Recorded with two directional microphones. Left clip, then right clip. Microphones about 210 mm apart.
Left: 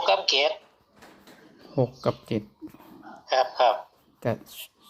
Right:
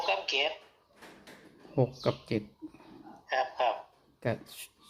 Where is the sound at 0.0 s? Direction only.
25° left (ahead or behind).